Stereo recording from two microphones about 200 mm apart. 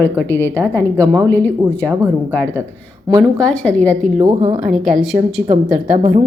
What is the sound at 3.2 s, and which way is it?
Speech, 5° left (ahead or behind).